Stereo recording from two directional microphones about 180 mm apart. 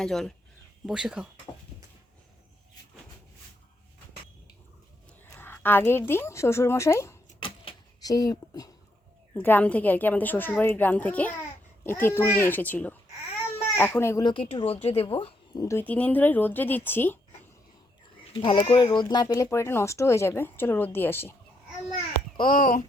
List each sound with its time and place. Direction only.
0.0 s speech: centre (ahead or behind)
5.3 s a woman's voice: 10° left (ahead or behind)
7.3 s a sound: 30° left (ahead or behind)
9.3 s speech: 10° left (ahead or behind); by 15.6 s 30° left (ahead or behind)
15.6 s speech: 15° left (ahead or behind)
18.3 s speech: 25° left (ahead or behind)
22.4 s a child's voice: 50° left (ahead or behind)